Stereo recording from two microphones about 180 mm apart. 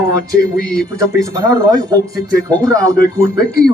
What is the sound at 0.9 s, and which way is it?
Speech, 20° right (ahead or behind).